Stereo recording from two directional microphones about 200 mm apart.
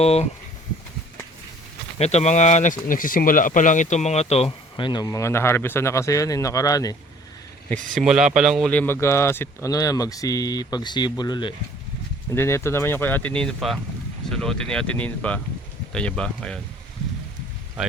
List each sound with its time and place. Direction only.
0.0 s speech: 30° left (ahead or behind)
2.0 s speech: 35° left (ahead or behind); by 6.9 s 15° left (ahead or behind)
7.9 s speech: 5° right (ahead or behind)
8.7 s speech: 10° left (ahead or behind)